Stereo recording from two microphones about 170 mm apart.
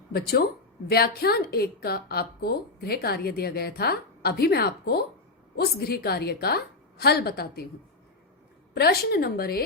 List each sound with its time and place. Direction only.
0.1 s a woman's voice: 65° left (ahead or behind)
8.7 s a woman's voice: 65° left (ahead or behind)